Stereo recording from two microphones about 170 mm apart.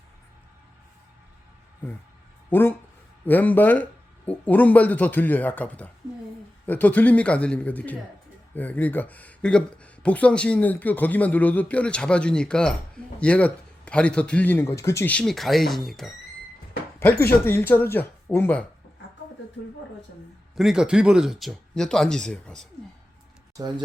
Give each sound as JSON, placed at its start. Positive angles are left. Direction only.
{"t": 2.5, "sound": "speech", "side_deg": 10}
{"t": 17.0, "sound": "speech", "side_deg": 10}
{"t": 20.6, "sound": "speech", "side_deg": -5}